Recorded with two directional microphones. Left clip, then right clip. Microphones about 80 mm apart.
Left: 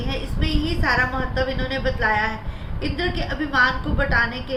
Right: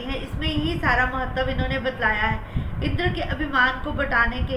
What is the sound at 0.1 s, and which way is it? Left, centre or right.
A woman's voice, left.